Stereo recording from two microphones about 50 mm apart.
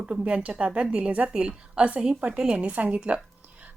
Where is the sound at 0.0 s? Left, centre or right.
Right.